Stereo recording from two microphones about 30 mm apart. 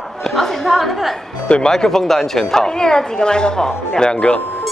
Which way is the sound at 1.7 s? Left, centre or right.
Centre.